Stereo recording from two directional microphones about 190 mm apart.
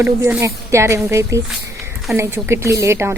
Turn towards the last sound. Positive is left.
turn(degrees=-15)  # may be behind; listen again after turning